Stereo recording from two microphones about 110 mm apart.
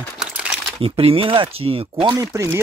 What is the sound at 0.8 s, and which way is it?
Speech, 55° right (ahead or behind).